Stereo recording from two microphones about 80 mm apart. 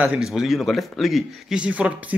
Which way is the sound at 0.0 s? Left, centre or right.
Centre.